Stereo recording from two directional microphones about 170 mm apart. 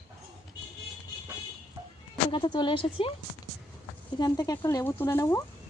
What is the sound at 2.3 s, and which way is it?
Speech, 30° left (ahead or behind).